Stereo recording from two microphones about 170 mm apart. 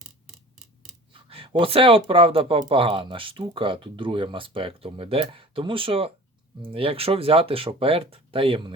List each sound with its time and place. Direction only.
1.1 s speech: 30° right (ahead or behind)